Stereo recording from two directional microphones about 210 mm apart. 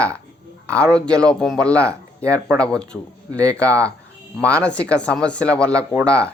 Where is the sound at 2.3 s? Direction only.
15° right (ahead or behind).